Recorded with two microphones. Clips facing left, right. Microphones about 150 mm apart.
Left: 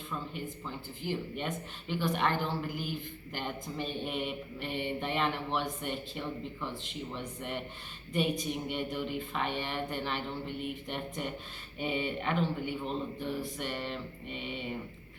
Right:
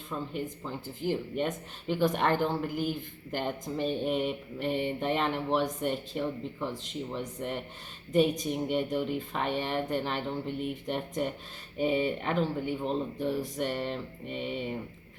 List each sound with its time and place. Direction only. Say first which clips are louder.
0.1 s mantra: right 5 dB; 45° right (ahead or behind)
11.8 s speech: right 6 dB; 40° right (ahead or behind)